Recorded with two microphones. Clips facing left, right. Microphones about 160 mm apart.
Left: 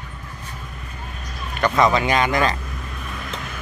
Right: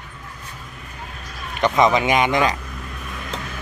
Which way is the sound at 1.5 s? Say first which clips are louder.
Right 1 dB; 20° right (ahead or behind).